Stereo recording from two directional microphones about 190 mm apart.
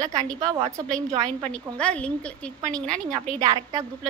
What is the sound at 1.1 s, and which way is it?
Speech, 35° right (ahead or behind).